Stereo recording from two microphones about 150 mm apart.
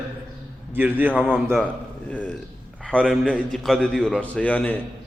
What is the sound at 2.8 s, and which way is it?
A man's voice, 5° left (ahead or behind).